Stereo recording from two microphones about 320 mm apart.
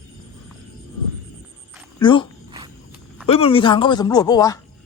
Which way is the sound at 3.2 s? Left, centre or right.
Centre.